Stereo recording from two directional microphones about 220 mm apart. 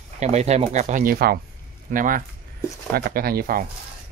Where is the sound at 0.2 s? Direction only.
30° right (ahead or behind).